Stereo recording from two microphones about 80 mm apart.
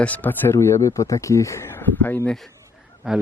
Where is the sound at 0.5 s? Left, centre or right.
Left.